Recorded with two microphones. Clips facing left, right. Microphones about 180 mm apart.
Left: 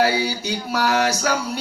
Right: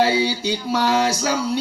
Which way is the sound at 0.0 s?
25° right (ahead or behind).